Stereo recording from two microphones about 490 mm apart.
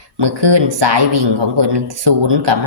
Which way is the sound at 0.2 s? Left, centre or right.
Right.